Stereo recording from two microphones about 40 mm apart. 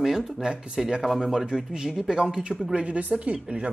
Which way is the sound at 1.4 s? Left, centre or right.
Centre.